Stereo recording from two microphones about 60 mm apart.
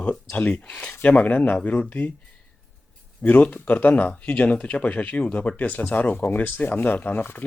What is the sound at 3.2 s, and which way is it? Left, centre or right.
Speech, left.